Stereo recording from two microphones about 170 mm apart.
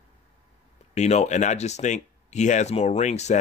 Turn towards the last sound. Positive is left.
turn(degrees=40)  # may be behind; listen again after turning